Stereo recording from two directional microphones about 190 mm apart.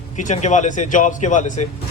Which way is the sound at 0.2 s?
40° left (ahead or behind).